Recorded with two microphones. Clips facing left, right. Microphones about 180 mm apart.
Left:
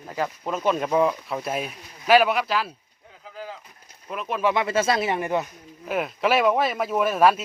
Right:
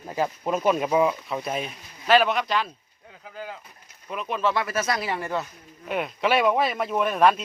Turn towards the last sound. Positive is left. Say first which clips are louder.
# left 1 dB
turn(degrees=5)  # may be behind; listen again after turning